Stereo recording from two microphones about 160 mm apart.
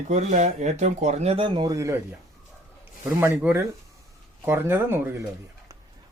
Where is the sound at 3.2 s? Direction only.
10° right (ahead or behind).